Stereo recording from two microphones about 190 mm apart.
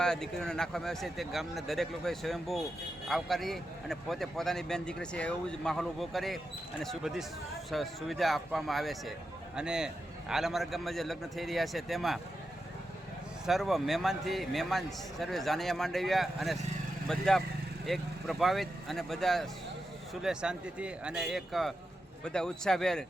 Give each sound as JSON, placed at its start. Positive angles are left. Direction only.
{"t": 0.0, "sound": "a man's voice", "side_deg": 5}
{"t": 13.5, "sound": "a man's voice", "side_deg": 0}